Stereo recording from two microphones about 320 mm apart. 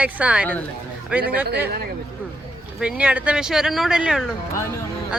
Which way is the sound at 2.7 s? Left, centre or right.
Centre.